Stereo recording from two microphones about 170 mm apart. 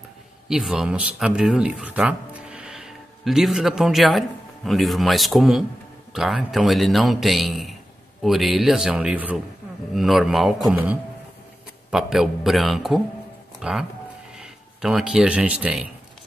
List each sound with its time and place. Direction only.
0.5 s a man's voice: centre (ahead or behind)